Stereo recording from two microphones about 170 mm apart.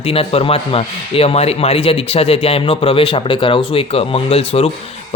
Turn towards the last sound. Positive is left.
turn(degrees=35)  # may be behind; listen again after turning